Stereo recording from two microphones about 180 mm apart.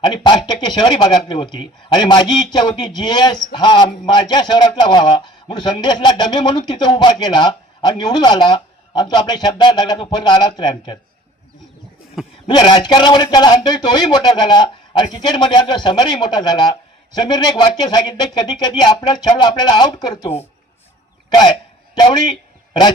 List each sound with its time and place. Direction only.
0.0 s a man's voice: 25° left (ahead or behind)
12.5 s a man's voice: 25° left (ahead or behind)
21.2 s a sound: 25° left (ahead or behind)